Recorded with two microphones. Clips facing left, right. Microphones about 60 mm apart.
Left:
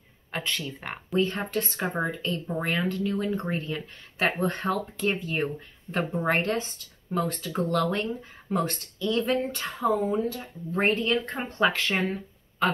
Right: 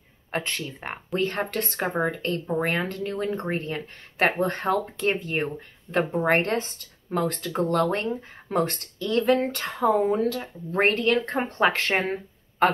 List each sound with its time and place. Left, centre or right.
0.3 s speech: right
1.1 s speech: right
11.3 s speech: right